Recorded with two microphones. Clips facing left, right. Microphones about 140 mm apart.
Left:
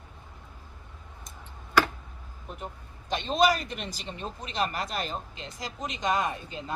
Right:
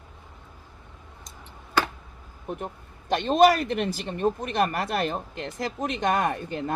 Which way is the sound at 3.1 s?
55° right (ahead or behind).